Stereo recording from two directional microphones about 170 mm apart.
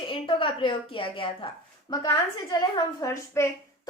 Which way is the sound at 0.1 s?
30° left (ahead or behind).